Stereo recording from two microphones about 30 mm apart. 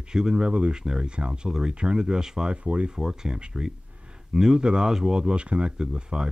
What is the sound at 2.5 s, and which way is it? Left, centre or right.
Speech, right.